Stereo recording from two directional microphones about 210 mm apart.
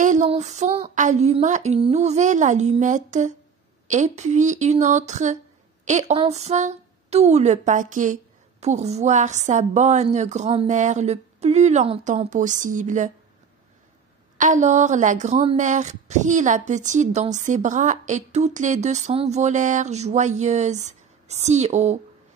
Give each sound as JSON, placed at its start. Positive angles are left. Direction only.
{"t": 0.0, "sound": "a woman's voice", "side_deg": -35}
{"t": 14.4, "sound": "a woman's voice", "side_deg": -35}